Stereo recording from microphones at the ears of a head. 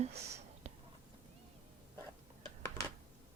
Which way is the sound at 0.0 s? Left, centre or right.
Right.